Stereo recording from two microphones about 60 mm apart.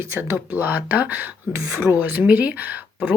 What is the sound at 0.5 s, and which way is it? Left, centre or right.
Speech, right.